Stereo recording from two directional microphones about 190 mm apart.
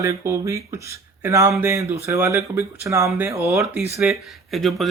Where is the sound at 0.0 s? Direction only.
15° right (ahead or behind).